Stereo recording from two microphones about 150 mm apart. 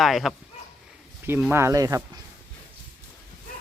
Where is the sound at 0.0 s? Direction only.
Centre (ahead or behind).